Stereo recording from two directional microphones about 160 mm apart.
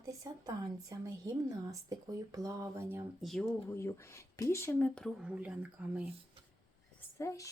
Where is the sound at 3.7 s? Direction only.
15° left (ahead or behind).